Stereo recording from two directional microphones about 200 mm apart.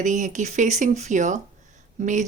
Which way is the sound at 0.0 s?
40° right (ahead or behind).